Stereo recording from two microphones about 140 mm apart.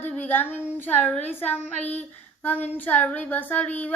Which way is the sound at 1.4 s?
10° left (ahead or behind).